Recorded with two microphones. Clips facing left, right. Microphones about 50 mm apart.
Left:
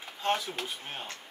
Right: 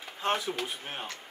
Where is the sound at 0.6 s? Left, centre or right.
Centre.